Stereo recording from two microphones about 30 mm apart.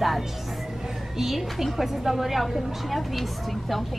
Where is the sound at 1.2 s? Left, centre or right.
Centre.